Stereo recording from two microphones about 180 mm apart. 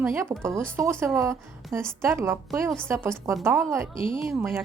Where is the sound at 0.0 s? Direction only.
15° right (ahead or behind).